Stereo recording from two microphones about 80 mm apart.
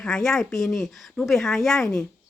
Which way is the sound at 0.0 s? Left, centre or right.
Centre.